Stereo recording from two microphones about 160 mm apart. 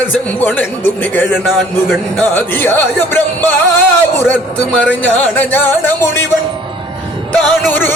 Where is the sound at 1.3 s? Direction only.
5° right (ahead or behind).